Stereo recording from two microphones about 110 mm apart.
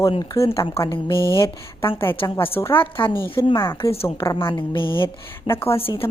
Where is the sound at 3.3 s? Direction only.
50° left (ahead or behind).